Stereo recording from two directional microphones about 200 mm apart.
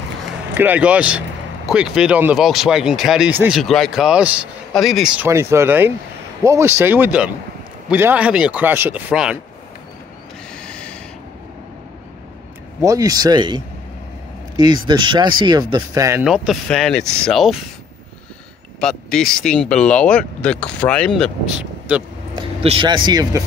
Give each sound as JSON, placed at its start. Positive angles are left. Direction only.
{"t": 0.6, "sound": "speech", "side_deg": -5}
{"t": 10.5, "sound": "a sound", "side_deg": 5}
{"t": 12.8, "sound": "speech", "side_deg": -15}
{"t": 14.6, "sound": "speech", "side_deg": -20}
{"t": 16.3, "sound": "speech", "side_deg": 0}
{"t": 18.8, "sound": "speech", "side_deg": 5}
{"t": 22.3, "sound": "speech", "side_deg": -25}